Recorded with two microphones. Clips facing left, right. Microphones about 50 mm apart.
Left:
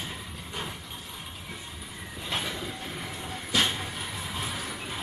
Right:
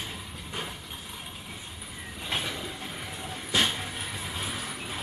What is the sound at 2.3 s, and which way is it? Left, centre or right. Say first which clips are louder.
Train: even; centre.